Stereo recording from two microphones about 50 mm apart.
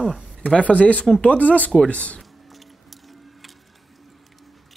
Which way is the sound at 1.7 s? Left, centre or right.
Centre.